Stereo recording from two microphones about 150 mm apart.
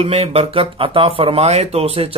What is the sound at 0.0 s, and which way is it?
A man's voice, 40° right (ahead or behind).